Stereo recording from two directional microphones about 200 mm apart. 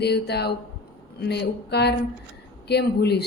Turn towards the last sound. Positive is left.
turn(degrees=55)  # may be behind; listen again after turning